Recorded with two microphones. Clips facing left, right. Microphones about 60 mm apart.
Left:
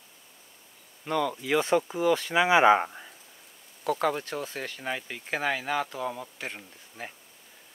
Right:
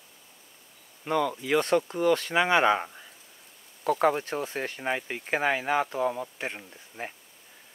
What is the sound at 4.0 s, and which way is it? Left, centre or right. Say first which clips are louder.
Speech: right 6 dB; right.